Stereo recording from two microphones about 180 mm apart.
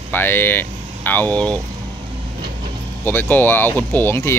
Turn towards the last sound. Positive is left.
turn(degrees=15)  # may be behind; listen again after turning